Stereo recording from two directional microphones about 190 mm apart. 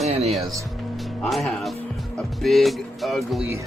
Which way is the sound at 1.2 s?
Centre (ahead or behind).